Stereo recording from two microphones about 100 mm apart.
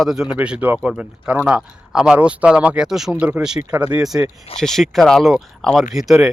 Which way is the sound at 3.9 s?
5° right (ahead or behind).